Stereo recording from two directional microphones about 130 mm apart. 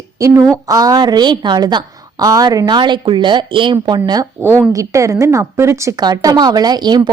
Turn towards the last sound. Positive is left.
turn(degrees=-35)  # may be behind; listen again after turning